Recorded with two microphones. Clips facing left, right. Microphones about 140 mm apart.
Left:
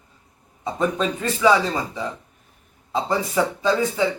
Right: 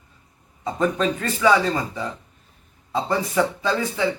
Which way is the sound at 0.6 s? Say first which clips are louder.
Right 1 dB; 10° left (ahead or behind).